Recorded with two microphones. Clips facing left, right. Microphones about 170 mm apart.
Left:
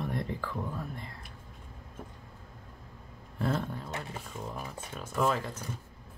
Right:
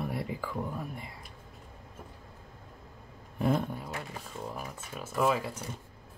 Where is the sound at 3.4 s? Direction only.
15° right (ahead or behind).